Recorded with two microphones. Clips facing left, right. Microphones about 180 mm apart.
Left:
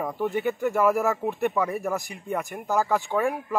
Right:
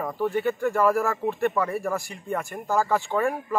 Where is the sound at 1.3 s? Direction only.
15° left (ahead or behind).